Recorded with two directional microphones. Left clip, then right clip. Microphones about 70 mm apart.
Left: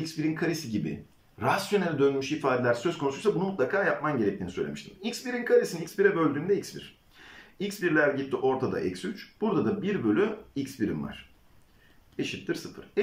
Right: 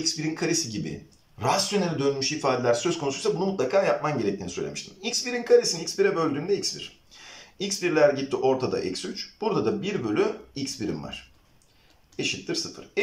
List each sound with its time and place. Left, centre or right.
0.2 s speech: right
3.7 s speech: right
12.2 s speech: right